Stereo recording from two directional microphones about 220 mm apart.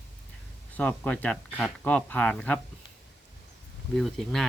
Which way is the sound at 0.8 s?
5° left (ahead or behind).